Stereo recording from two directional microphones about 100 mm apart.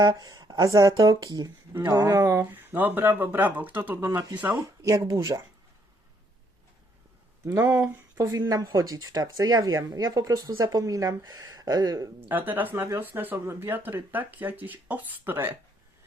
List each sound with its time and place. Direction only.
0.0 s a woman's voice: 40° right (ahead or behind)
2.4 s speech: 20° right (ahead or behind)
4.6 s a woman's voice: 30° right (ahead or behind)
7.4 s a woman's voice: 30° right (ahead or behind)
12.3 s speech: 20° right (ahead or behind)